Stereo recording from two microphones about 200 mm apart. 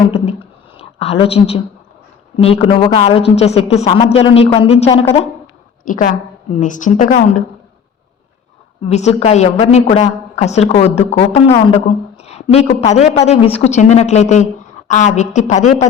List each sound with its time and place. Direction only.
0.1 s a sound: 30° left (ahead or behind)
2.3 s a woman's voice: 30° left (ahead or behind)
5.8 s a woman's voice: 40° left (ahead or behind)
8.9 s a woman's voice: 35° left (ahead or behind)